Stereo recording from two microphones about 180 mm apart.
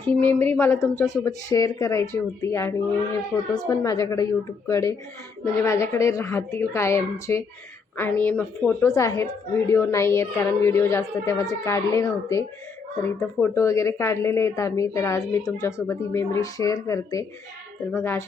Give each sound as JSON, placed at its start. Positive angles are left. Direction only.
{"t": 0.0, "sound": "a woman's voice", "side_deg": 10}